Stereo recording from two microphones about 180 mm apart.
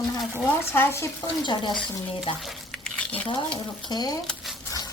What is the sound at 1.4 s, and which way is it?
Speech, 25° left (ahead or behind).